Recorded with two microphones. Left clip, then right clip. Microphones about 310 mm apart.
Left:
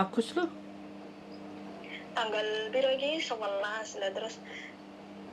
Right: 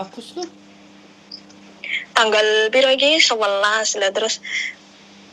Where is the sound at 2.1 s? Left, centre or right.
Right.